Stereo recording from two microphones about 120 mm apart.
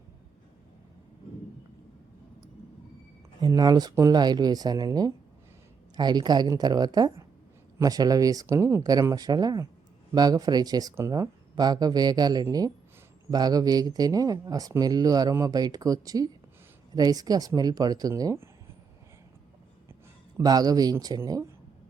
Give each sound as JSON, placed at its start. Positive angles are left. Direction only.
{"t": 3.4, "sound": "speech", "side_deg": -35}
{"t": 20.4, "sound": "speech", "side_deg": -35}